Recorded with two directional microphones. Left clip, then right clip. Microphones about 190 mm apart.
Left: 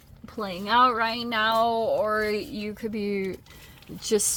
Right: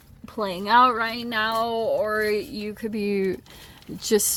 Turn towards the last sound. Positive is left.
turn(degrees=-25)  # may be behind; listen again after turning